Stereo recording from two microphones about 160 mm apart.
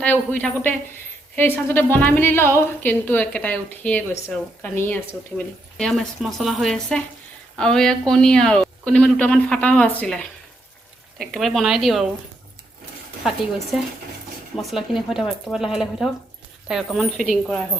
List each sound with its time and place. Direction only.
0.0 s a woman's voice: 10° left (ahead or behind)
11.3 s a woman's voice: centre (ahead or behind)
14.5 s a woman's voice: centre (ahead or behind)